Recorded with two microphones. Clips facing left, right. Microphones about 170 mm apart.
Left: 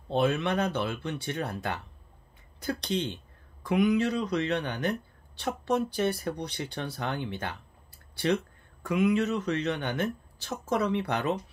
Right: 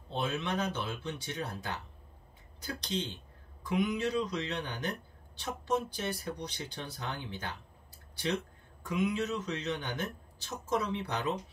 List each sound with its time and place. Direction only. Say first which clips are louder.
0.1 s speech: left 8 dB; 60° left (ahead or behind)
8.8 s speech: left 6 dB; 70° left (ahead or behind)